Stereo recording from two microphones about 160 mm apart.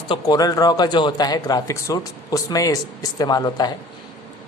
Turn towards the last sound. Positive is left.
turn(degrees=25)  # may be behind; listen again after turning